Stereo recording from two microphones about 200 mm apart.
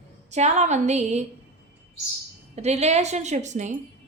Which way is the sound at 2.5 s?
35° right (ahead or behind).